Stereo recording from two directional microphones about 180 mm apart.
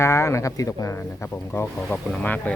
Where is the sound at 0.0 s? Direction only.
15° left (ahead or behind).